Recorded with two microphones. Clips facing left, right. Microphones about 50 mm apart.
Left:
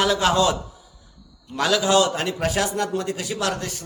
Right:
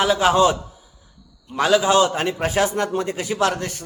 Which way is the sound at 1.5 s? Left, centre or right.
Centre.